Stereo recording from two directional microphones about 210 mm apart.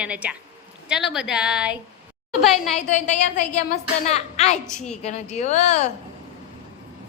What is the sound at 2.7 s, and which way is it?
A woman's voice, 35° left (ahead or behind).